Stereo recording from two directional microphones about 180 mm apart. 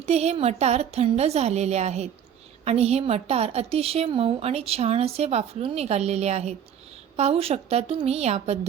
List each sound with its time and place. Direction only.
0.0 s a woman's voice: 35° right (ahead or behind)